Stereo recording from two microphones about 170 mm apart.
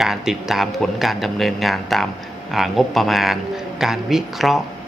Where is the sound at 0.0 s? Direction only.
Centre (ahead or behind).